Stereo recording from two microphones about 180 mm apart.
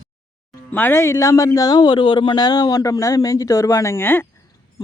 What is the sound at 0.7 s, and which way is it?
Speech, 10° left (ahead or behind).